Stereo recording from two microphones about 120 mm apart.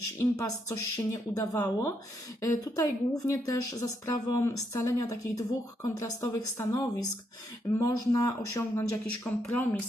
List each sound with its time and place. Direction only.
0.2 s speech: 25° left (ahead or behind)
9.0 s speech: 10° left (ahead or behind)